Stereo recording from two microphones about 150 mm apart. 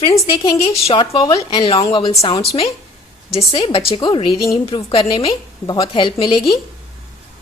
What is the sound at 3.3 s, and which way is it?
A woman's voice, 35° left (ahead or behind).